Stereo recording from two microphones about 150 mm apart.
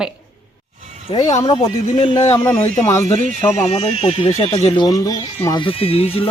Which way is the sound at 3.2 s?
60° right (ahead or behind).